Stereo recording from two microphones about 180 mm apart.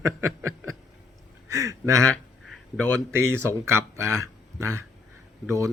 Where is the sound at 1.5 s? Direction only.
20° right (ahead or behind).